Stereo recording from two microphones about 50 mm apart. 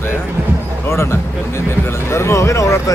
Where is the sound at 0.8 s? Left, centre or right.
Left.